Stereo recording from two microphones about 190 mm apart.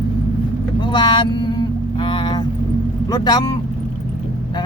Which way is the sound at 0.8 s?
25° left (ahead or behind).